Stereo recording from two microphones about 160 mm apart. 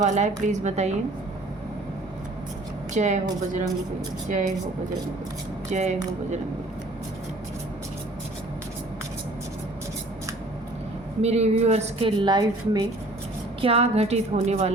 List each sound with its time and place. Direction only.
0.0 s a woman's voice: 50° right (ahead or behind)
2.9 s a woman's voice: 50° right (ahead or behind)
4.3 s a woman's voice: 50° right (ahead or behind)
5.7 s a woman's voice: 45° right (ahead or behind)
11.2 s a woman's voice: 40° right (ahead or behind); by 12.9 s 25° right (ahead or behind)
13.6 s a woman's voice: 35° right (ahead or behind)